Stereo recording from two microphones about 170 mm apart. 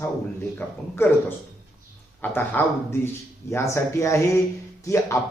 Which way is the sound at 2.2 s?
10° left (ahead or behind).